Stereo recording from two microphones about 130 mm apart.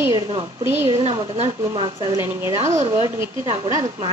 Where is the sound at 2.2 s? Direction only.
20° right (ahead or behind).